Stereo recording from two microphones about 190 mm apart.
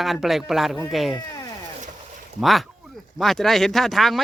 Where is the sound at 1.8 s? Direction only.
40° right (ahead or behind).